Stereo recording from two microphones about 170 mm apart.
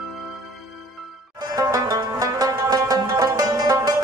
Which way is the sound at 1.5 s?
20° right (ahead or behind).